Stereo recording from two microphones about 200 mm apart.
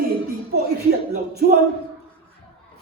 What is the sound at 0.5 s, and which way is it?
Speech, 55° right (ahead or behind).